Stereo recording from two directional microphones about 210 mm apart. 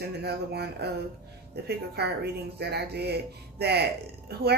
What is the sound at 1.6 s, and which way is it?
Speech, 50° right (ahead or behind).